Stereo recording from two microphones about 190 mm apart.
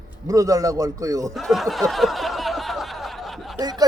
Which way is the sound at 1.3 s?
Centre (ahead or behind).